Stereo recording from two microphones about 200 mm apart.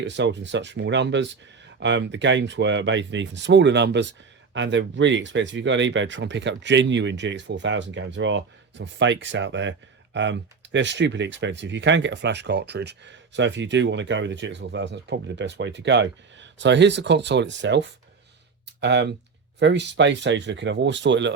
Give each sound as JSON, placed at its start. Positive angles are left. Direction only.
{"t": 0.0, "sound": "speech", "side_deg": -60}